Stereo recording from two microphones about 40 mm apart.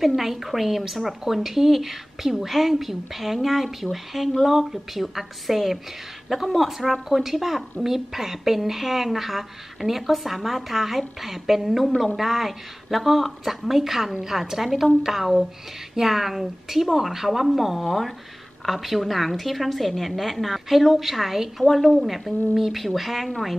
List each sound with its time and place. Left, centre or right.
0.0 s a woman's voice: centre